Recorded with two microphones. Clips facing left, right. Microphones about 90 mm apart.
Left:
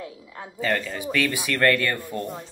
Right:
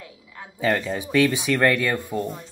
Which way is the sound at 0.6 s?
15° right (ahead or behind).